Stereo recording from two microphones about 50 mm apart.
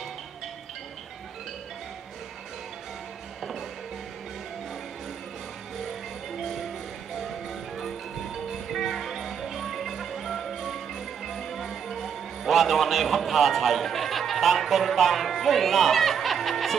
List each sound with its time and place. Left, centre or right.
5.9 s music: centre